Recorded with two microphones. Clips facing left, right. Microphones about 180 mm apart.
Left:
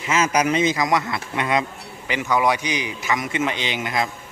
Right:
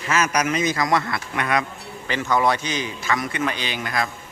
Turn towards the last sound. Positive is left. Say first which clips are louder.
# left 2 dB
turn(degrees=20)  # may be behind; listen again after turning